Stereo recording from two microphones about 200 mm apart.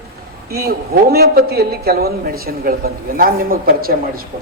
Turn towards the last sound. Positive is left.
turn(degrees=-45)  # may be behind; listen again after turning